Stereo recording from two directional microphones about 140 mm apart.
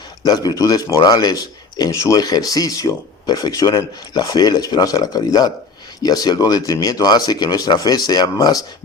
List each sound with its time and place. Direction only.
0.4 s speech: 25° left (ahead or behind)